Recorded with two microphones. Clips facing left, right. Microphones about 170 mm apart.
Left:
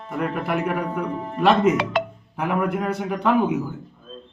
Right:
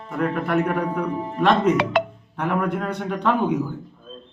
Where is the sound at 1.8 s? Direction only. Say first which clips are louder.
Right 2 dB; 60° right (ahead or behind).